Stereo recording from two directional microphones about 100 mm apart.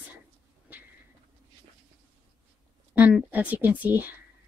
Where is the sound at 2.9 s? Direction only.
15° right (ahead or behind).